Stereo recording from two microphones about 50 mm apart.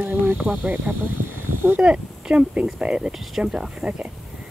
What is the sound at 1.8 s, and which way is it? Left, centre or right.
Speech, centre.